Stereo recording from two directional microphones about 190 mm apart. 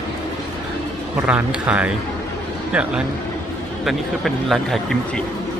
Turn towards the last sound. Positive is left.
turn(degrees=0)  # may be behind; listen again after turning